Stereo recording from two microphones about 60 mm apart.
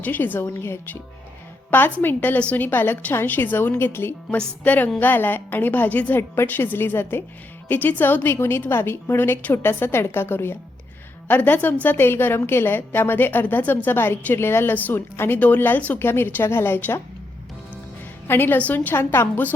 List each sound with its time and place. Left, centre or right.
0.0 s a woman's voice: left
2.0 s a woman's voice: left
4.6 s a woman's voice: left
6.1 s a woman's voice: left
7.7 s a woman's voice: left
16.0 s a woman's voice: left
18.3 s a woman's voice: left